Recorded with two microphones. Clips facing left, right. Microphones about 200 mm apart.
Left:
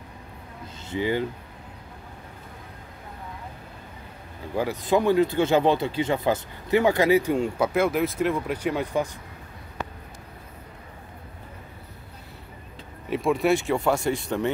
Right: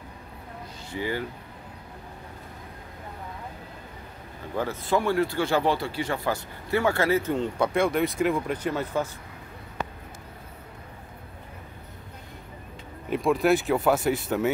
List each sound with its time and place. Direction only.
0.8 s speech: 20° left (ahead or behind)
4.6 s speech: 15° left (ahead or behind)
13.1 s speech: centre (ahead or behind)